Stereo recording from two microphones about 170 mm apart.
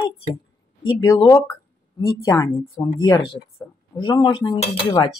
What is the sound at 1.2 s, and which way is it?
Dishes, 20° left (ahead or behind).